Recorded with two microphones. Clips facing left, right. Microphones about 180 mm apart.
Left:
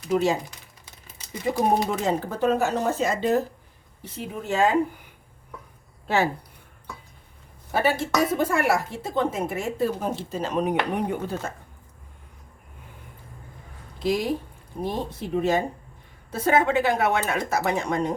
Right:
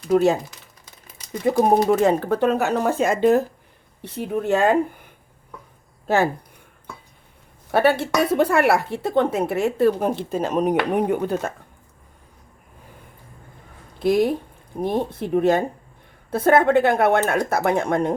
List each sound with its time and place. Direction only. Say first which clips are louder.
0.1 s speech: right 5 dB; 55° right (ahead or behind)
1.5 s a woman's voice: right 6 dB; 55° right (ahead or behind)
7.7 s a woman's voice: right 5 dB; 65° right (ahead or behind)
14.0 s a woman's voice: right 6 dB; 55° right (ahead or behind)